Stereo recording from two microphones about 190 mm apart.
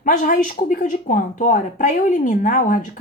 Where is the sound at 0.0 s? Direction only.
45° left (ahead or behind).